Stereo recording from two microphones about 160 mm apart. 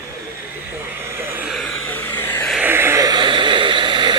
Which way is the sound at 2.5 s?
10° right (ahead or behind).